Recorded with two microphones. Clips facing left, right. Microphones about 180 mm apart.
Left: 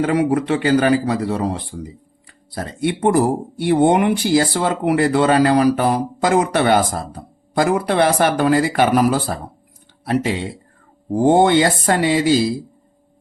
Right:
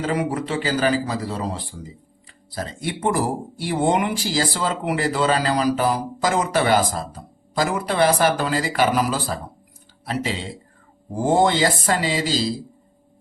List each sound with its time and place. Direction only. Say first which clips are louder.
0.0 s speech: left 6 dB; 65° left (ahead or behind)